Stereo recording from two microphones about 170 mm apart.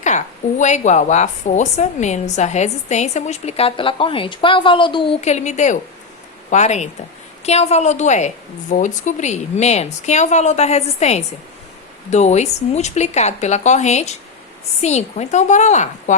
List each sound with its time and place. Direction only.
0.6 s a woman's voice: 45° left (ahead or behind)